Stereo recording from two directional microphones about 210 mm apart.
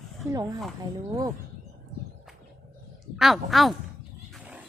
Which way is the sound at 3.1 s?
Centre (ahead or behind).